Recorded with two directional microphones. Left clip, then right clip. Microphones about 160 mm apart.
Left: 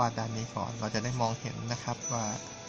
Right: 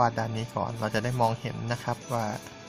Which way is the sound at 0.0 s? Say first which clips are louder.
Right 5 dB; 20° right (ahead or behind).